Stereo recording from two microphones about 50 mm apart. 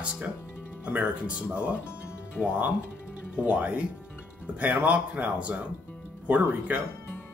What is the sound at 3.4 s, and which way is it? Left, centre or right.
Speech, right.